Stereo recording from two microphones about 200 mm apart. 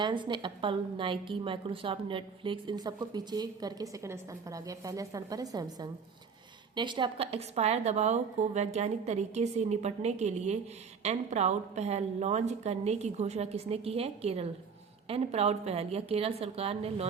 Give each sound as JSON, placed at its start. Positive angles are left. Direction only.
{"t": 0.0, "sound": "a woman's voice", "side_deg": -25}